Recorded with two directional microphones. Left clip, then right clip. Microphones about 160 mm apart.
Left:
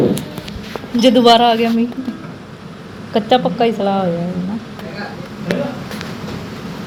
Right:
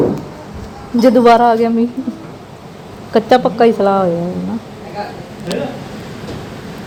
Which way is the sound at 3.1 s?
40° right (ahead or behind).